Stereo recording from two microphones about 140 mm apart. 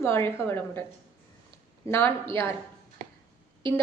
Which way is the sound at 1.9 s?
15° left (ahead or behind).